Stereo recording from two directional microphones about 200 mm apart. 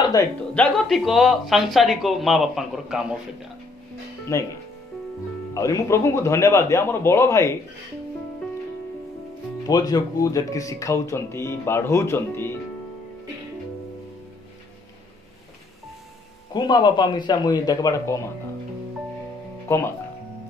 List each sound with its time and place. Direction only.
0.6 s speech: centre (ahead or behind)
4.3 s speech: 15° left (ahead or behind)
5.5 s speech: 15° left (ahead or behind)
9.7 s speech: 20° left (ahead or behind)
16.5 s speech: 20° left (ahead or behind)